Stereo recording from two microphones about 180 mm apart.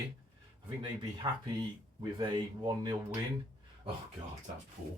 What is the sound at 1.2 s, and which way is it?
Speech, 20° right (ahead or behind).